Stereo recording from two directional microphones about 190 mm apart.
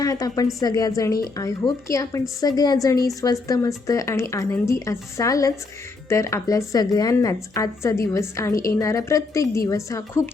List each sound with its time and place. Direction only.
0.0 s a woman's voice: 20° left (ahead or behind)